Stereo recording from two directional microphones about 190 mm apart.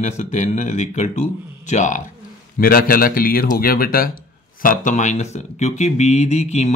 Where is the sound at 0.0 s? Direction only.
40° left (ahead or behind).